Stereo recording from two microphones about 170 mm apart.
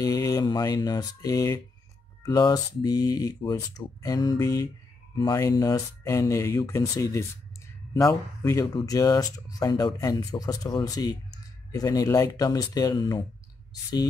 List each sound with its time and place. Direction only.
0.0 s speech: 20° left (ahead or behind)